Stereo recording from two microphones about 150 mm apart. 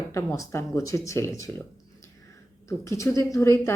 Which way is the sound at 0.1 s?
20° left (ahead or behind).